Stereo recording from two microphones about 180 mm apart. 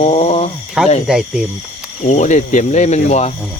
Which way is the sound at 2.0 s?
40° left (ahead or behind).